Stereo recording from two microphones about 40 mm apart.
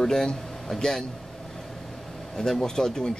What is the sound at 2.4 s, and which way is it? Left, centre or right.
Speech, centre.